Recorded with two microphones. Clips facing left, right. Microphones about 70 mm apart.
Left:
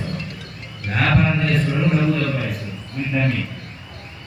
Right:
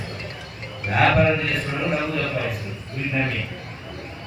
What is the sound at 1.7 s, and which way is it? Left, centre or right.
Speech, centre.